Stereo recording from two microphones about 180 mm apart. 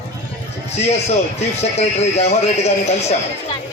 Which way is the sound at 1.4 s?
35° left (ahead or behind).